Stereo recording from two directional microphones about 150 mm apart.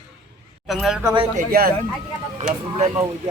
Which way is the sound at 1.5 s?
90° right.